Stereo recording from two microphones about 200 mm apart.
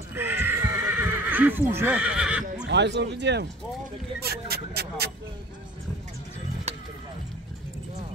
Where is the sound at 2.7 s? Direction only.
60° right (ahead or behind).